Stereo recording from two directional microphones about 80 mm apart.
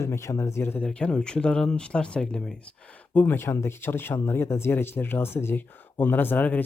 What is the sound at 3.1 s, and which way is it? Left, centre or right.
Speech, left.